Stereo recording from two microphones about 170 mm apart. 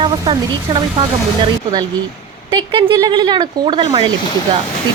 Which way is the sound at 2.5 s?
25° right (ahead or behind).